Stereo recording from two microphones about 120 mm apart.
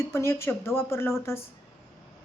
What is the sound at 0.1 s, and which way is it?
Speech, 25° left (ahead or behind).